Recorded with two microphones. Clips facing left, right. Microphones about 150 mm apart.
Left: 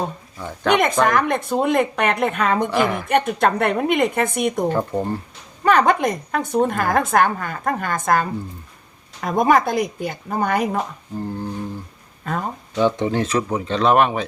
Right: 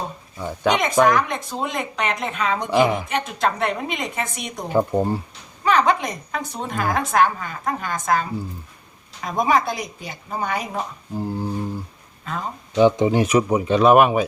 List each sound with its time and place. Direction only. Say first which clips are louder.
0.3 s speech: right 3 dB; 15° right (ahead or behind)
1.0 s speech: even; 55° left (ahead or behind)
2.6 s speech: right 2 dB; 15° right (ahead or behind)
3.1 s speech: left 5 dB; 55° left (ahead or behind)
4.7 s speech: right 2 dB; 15° right (ahead or behind)
5.6 s a woman's voice: left 3 dB; 50° left (ahead or behind)
11.2 s speech: right 1 dB; 10° right (ahead or behind)
12.2 s a sound: left 4 dB; 50° left (ahead or behind)
12.7 s speech: right 3 dB; 15° right (ahead or behind)